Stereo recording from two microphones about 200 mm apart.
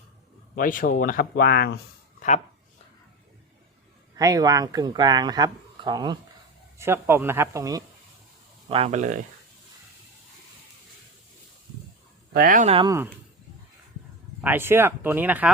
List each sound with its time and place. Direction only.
0.5 s speech: 45° left (ahead or behind)
4.2 s speech: 20° right (ahead or behind)
8.7 s speech: 30° right (ahead or behind)
12.3 s speech: 45° right (ahead or behind)
12.7 s speech: 20° right (ahead or behind)
14.4 s speech: 10° right (ahead or behind)